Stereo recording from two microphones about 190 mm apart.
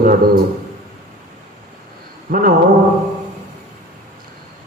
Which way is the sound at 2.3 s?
50° right (ahead or behind).